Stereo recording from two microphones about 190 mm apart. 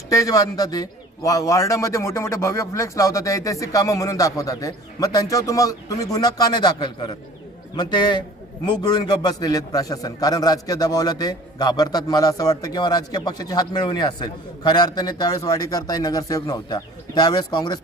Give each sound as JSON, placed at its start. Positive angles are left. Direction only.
{"t": 0.1, "sound": "a man's voice", "side_deg": 20}